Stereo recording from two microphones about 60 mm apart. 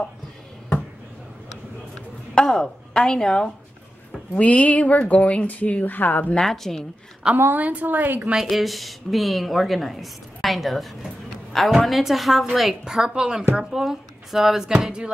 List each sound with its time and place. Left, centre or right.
2.4 s a woman's voice: centre
4.4 s speech: left
6.3 s a woman's voice: centre
7.5 s a woman's voice: right
8.4 s a woman's voice: centre